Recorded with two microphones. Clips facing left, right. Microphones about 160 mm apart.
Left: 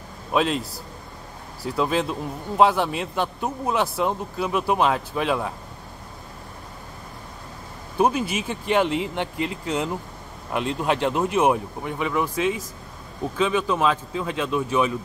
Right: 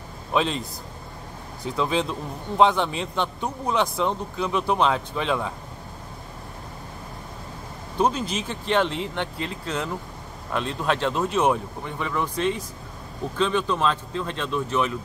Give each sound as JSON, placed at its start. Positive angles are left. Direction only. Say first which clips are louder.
{"t": 0.3, "sound": "a man's voice", "louder": "left 2 dB", "side_deg": 5}
{"t": 8.0, "sound": "a man's voice", "louder": "left 2 dB", "side_deg": 10}